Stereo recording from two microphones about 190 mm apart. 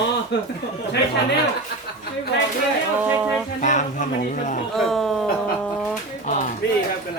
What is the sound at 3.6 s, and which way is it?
Speech, 40° left (ahead or behind).